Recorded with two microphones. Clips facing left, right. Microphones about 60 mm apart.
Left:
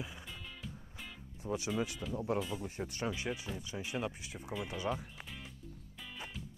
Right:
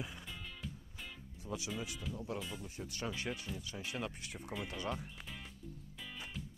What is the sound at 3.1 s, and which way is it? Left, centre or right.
Speech, centre.